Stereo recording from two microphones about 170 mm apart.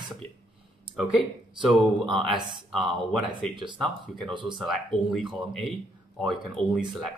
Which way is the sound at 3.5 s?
25° right (ahead or behind).